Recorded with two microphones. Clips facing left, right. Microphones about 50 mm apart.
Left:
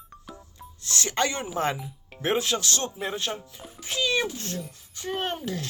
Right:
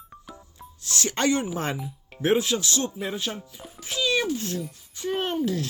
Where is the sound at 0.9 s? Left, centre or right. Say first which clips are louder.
Right 3 dB; left.